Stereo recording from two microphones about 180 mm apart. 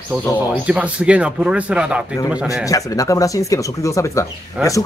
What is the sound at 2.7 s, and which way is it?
Speech, 20° left (ahead or behind).